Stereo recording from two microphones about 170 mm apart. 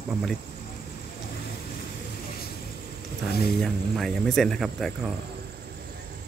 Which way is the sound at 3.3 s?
65° left (ahead or behind).